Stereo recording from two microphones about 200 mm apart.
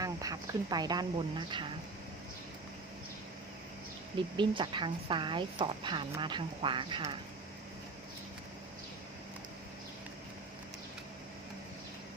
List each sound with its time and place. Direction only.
0.0 s a woman's voice: 20° right (ahead or behind)
4.4 s a woman's voice: 25° right (ahead or behind)